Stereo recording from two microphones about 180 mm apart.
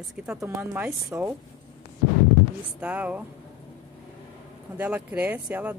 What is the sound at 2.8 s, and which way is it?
Speech, 5° right (ahead or behind).